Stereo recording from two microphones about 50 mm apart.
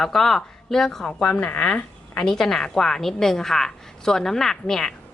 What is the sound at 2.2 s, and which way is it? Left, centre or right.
Speech, centre.